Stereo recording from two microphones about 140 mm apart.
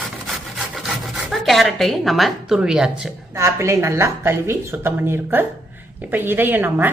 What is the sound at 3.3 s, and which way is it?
Speech, 20° right (ahead or behind).